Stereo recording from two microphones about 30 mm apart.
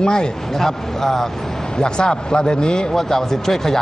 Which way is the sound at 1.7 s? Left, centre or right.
Left.